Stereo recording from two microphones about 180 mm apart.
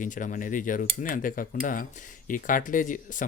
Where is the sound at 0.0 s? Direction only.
45° left (ahead or behind).